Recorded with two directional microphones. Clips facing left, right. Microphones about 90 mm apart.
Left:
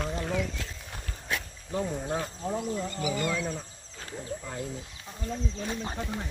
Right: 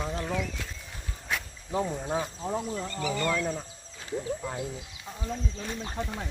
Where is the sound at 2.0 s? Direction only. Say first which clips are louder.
Right 1 dB; 5° right (ahead or behind).